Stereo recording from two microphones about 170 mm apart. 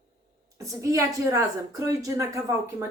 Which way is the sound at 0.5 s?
20° right (ahead or behind).